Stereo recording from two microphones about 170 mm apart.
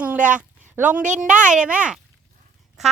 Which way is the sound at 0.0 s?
10° right (ahead or behind).